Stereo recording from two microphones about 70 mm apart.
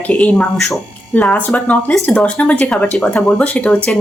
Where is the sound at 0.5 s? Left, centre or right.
Centre.